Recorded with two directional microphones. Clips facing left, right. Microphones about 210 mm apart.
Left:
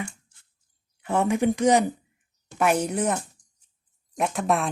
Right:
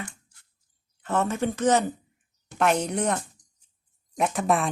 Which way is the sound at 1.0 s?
15° left (ahead or behind).